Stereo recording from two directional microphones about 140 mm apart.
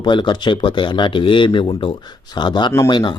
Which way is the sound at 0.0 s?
35° left (ahead or behind).